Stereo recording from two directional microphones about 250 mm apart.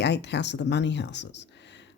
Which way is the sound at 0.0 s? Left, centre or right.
Left.